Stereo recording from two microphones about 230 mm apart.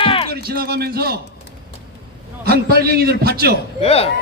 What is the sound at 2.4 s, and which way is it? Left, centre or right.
A man's voice, right.